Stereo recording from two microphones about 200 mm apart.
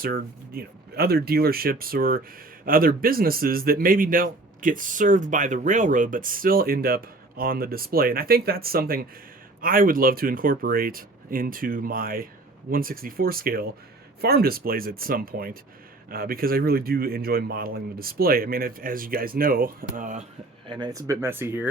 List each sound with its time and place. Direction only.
0.0 s speech: 50° right (ahead or behind)
20.7 s speech: 20° right (ahead or behind)